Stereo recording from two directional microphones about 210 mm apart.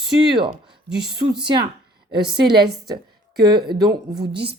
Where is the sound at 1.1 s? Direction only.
50° right (ahead or behind).